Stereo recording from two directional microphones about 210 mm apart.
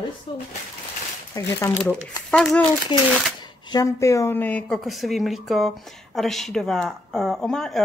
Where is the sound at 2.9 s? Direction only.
20° left (ahead or behind); by 7.8 s centre (ahead or behind).